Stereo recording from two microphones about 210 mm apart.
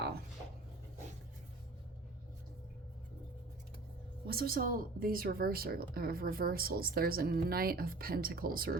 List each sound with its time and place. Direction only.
4.3 s speech: 45° right (ahead or behind)